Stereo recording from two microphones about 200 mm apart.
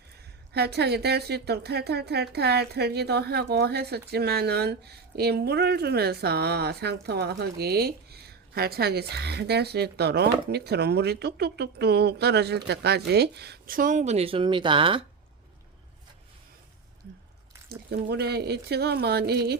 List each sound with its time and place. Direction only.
0.5 s speech: 55° right (ahead or behind); by 15.0 s 25° right (ahead or behind)
17.7 s speech: 55° right (ahead or behind)